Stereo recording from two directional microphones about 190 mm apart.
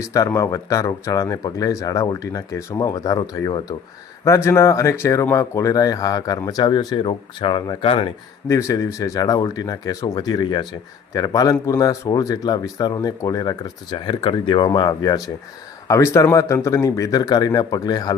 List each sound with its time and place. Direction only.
0.0 s speech: 15° left (ahead or behind)
8.4 s speech: 15° left (ahead or behind)